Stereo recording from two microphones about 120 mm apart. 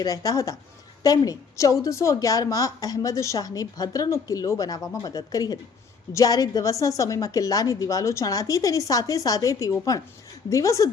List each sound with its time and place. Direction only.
0.0 s a woman's voice: 30° left (ahead or behind)